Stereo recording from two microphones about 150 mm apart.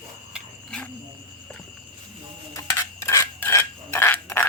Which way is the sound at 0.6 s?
5° left (ahead or behind).